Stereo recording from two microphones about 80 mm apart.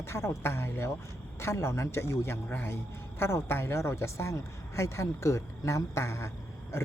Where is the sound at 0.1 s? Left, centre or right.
Left.